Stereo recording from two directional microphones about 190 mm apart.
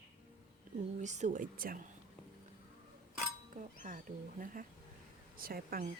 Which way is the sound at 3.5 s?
45° right (ahead or behind).